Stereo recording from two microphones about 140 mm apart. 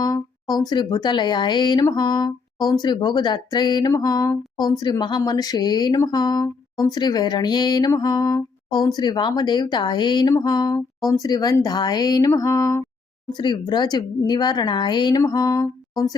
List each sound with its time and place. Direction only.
0.0 s speech: 30° left (ahead or behind)
13.3 s speech: 35° left (ahead or behind)